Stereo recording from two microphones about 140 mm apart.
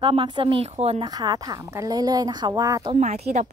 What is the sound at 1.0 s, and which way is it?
A woman's voice, 30° right (ahead or behind).